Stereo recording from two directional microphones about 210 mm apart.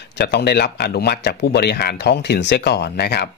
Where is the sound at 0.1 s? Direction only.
55° left (ahead or behind).